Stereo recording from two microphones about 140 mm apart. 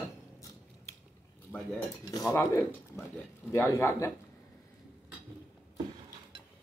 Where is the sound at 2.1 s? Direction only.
20° left (ahead or behind).